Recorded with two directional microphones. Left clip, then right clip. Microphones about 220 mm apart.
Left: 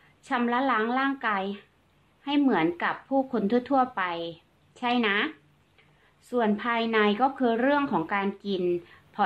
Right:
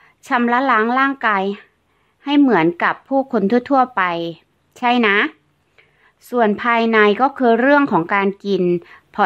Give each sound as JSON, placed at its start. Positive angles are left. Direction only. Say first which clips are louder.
{"t": 0.0, "sound": "speech", "louder": "right 10 dB", "side_deg": -45}